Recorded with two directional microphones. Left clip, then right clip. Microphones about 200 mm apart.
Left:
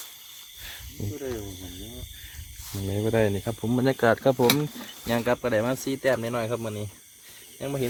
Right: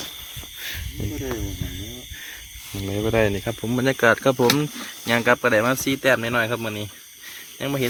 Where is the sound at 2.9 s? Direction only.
15° left (ahead or behind).